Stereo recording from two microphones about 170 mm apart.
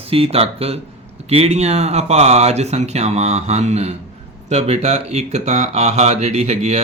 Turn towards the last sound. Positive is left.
turn(degrees=-40)  # may be behind; listen again after turning